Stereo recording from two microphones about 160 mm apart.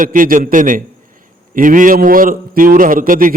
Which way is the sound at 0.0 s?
55° right (ahead or behind).